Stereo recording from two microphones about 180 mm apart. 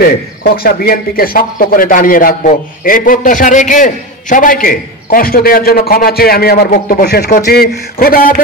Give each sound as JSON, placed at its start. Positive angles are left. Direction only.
{"t": 0.4, "sound": "a man's voice", "side_deg": 55}